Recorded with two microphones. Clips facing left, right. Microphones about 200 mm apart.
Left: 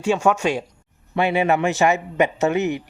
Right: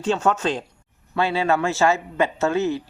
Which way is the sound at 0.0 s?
10° left (ahead or behind).